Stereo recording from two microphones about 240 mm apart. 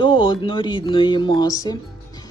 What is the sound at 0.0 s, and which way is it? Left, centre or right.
A man's voice, left.